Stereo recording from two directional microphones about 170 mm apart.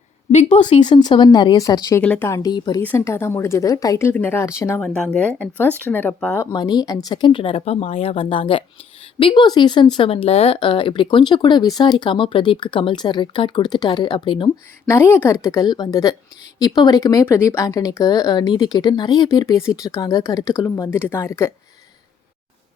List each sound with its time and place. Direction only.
0.3 s speech: 40° left (ahead or behind)
0.8 s speech: 25° left (ahead or behind)
2.0 s speech: 10° left (ahead or behind); by 2.8 s 25° left (ahead or behind)
2.8 s speech: 15° left (ahead or behind)
4.8 s speech: 5° left (ahead or behind)
6.4 s speech: 25° left (ahead or behind)
14.8 s speech: 15° left (ahead or behind)